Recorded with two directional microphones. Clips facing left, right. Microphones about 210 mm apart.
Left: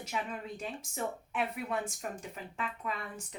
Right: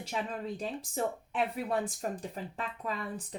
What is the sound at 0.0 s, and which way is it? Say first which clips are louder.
Speech: right 2 dB; 35° right (ahead or behind).